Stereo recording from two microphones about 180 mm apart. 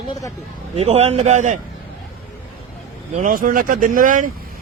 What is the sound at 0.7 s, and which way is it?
Speech, 35° right (ahead or behind).